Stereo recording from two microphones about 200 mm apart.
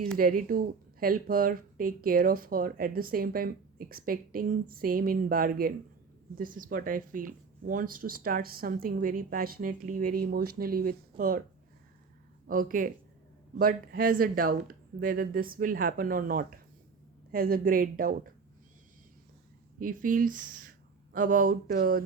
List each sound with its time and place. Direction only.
0.2 s speech: 45° right (ahead or behind)
12.5 s speech: 45° right (ahead or behind)
19.8 s speech: 45° right (ahead or behind)